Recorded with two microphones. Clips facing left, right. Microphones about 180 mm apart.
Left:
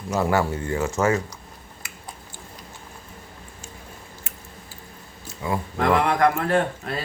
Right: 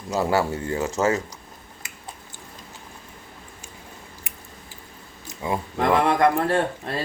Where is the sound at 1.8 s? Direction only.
20° right (ahead or behind).